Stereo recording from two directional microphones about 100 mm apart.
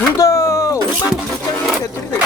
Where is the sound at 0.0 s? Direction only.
30° left (ahead or behind).